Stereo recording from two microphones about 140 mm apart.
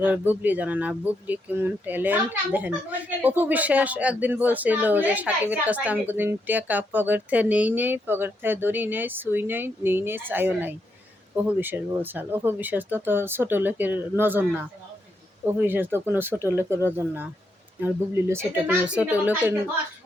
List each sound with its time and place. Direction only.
0.0 s speech: 10° right (ahead or behind)
15.4 s speech: 15° right (ahead or behind)